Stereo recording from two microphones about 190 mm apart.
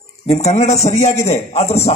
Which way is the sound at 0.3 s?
35° left (ahead or behind).